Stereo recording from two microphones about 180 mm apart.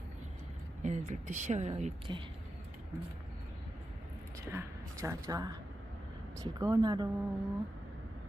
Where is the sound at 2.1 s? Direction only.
25° right (ahead or behind).